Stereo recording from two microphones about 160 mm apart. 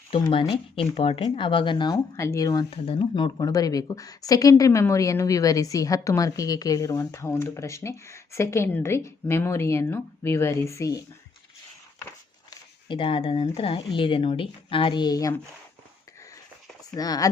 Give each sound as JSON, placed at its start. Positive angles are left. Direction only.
{"t": 0.1, "sound": "speech", "side_deg": 35}
{"t": 2.6, "sound": "speech", "side_deg": 35}
{"t": 12.5, "sound": "speech", "side_deg": 30}
{"t": 16.9, "sound": "speech", "side_deg": 25}